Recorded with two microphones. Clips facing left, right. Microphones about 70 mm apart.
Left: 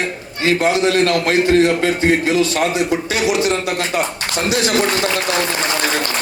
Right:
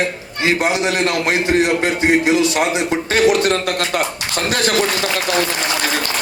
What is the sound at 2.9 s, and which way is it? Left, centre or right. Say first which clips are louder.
Speech: right 3 dB; right.